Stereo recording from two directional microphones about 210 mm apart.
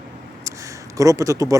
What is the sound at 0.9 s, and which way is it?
Speech, 15° right (ahead or behind).